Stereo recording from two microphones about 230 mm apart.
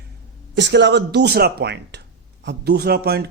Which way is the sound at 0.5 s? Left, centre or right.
Right.